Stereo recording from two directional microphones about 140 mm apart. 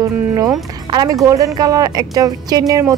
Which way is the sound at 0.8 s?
30° right (ahead or behind).